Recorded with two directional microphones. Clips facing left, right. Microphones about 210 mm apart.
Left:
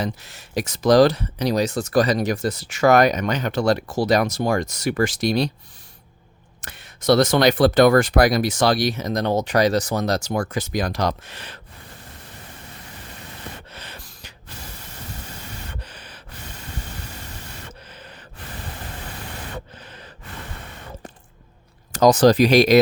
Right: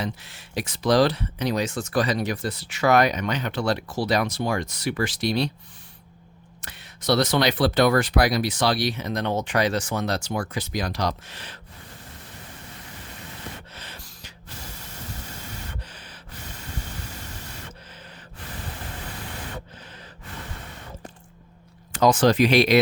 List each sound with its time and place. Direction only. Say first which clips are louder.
0.0 s speech: left 4 dB; 40° left (ahead or behind)
6.6 s speech: left 4 dB; 50° left (ahead or behind)
13.7 s gasp: left 2 dB; 60° left (ahead or behind)
15.8 s gasp: left 2 dB; 65° left (ahead or behind)
17.7 s gasp: left 2 dB; 65° left (ahead or behind)
19.8 s gasp: left 2 dB; 65° left (ahead or behind)
21.9 s speech: left 4 dB; 40° left (ahead or behind)